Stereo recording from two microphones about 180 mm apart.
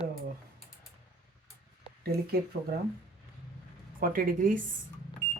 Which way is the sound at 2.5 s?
60° right (ahead or behind).